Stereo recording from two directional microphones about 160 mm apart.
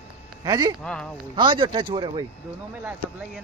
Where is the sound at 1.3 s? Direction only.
30° right (ahead or behind).